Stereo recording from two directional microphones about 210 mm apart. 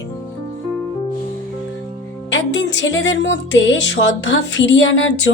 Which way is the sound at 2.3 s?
60° left (ahead or behind).